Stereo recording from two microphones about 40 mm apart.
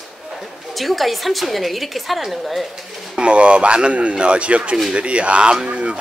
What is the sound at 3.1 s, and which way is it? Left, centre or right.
Speech, right.